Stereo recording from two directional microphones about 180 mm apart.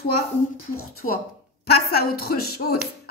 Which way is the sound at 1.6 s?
60° left (ahead or behind).